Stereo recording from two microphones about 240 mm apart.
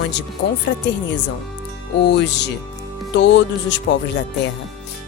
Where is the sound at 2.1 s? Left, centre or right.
Left.